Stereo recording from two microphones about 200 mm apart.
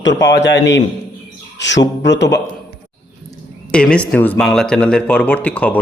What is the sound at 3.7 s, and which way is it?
Speech, 5° left (ahead or behind).